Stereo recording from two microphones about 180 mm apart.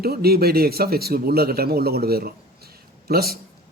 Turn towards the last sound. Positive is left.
turn(degrees=-60)  # may be behind; listen again after turning